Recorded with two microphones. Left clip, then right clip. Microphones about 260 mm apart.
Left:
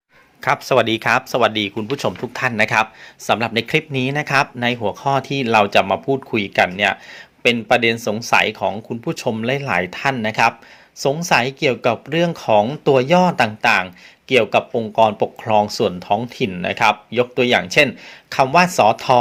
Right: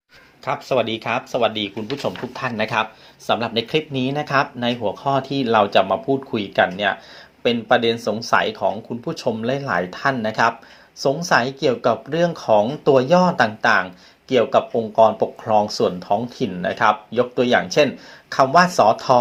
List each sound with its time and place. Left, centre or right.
0.4 s speech: left